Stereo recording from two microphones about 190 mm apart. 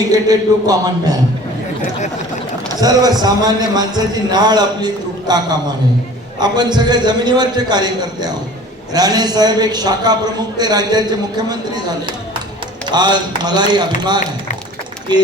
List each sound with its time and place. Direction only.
0.1 s speech: 20° right (ahead or behind)
2.8 s speech: 20° right (ahead or behind)